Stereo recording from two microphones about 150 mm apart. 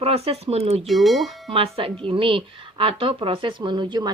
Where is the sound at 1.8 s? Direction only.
35° right (ahead or behind).